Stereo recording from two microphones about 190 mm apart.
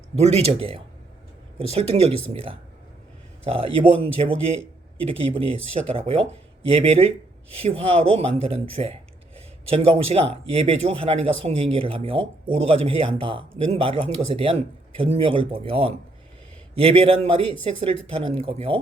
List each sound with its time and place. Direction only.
0.2 s speech: 35° right (ahead or behind)